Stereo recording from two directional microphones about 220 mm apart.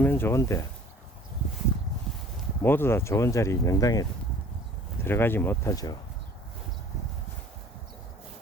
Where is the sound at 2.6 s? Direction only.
10° left (ahead or behind).